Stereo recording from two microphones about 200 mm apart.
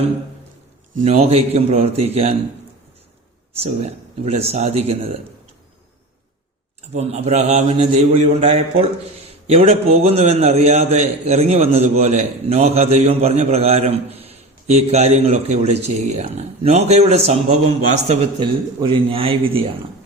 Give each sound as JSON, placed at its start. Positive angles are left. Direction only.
{"t": 0.9, "sound": "a man's voice", "side_deg": -30}
{"t": 3.6, "sound": "a man's voice", "side_deg": -30}
{"t": 6.9, "sound": "a man's voice", "side_deg": -30}
{"t": 18.4, "sound": "speech", "side_deg": -25}